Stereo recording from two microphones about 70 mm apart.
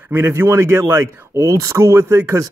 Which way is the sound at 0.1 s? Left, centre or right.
Right.